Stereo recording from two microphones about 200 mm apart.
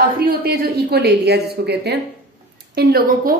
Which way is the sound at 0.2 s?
50° right (ahead or behind).